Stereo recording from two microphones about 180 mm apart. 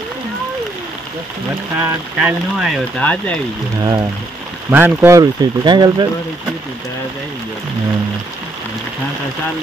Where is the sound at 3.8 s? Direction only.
25° right (ahead or behind).